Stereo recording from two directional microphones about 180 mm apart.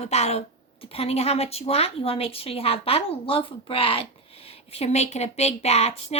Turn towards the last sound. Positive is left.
turn(degrees=35)  # may be behind; listen again after turning